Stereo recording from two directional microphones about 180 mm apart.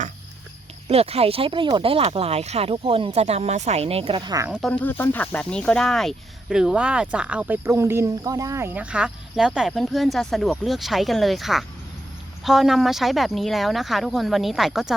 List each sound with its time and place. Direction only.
0.9 s speech: 35° right (ahead or behind)
4.4 s speech: 5° right (ahead or behind)
4.7 s speech: 10° left (ahead or behind)